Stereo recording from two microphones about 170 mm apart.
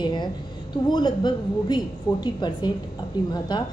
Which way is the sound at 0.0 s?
25° left (ahead or behind).